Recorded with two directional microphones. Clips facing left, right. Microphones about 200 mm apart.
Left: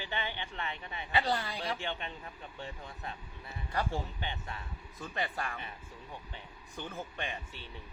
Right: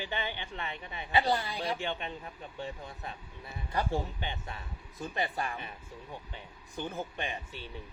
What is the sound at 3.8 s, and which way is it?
Speech, 45° right (ahead or behind).